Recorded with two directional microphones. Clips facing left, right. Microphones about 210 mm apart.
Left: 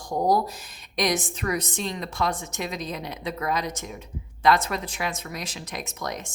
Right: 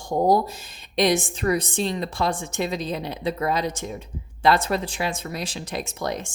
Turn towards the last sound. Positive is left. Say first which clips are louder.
# right 5 dB
turn(degrees=-30)  # may be behind; listen again after turning